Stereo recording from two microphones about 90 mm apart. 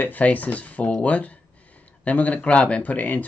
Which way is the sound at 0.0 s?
20° left (ahead or behind).